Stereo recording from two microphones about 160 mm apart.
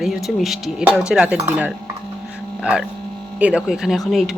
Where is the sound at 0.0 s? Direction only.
Centre (ahead or behind).